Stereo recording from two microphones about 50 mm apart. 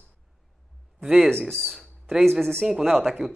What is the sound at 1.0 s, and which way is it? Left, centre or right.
Speech, centre.